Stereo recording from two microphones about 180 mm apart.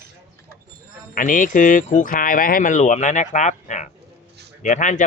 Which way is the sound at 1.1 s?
50° left (ahead or behind).